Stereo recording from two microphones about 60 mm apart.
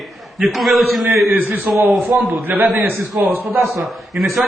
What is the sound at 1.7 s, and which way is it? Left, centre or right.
Speech, right.